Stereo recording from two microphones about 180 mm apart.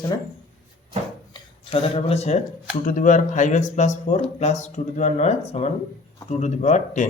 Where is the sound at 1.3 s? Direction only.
35° left (ahead or behind).